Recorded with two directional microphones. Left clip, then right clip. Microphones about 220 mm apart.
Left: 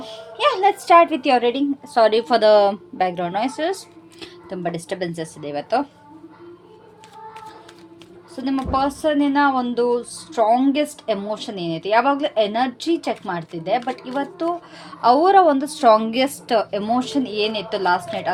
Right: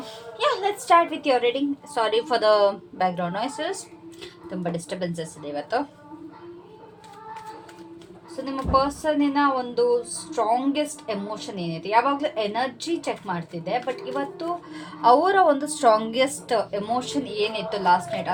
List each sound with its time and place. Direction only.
0.0 s a woman's voice: 35° left (ahead or behind)
8.5 s speech: 50° left (ahead or behind)